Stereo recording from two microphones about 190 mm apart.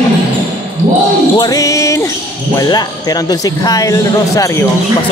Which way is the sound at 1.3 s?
20° left (ahead or behind).